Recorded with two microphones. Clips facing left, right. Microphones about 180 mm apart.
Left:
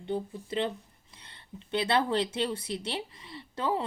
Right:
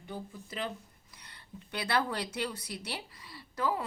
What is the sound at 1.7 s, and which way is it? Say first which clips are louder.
A woman's voice: left 5 dB; 25° left (ahead or behind).